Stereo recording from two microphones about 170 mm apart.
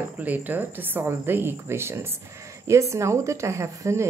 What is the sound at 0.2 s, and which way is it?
A woman's voice, 10° right (ahead or behind).